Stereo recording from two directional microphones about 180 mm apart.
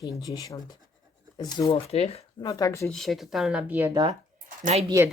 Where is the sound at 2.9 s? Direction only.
Centre (ahead or behind).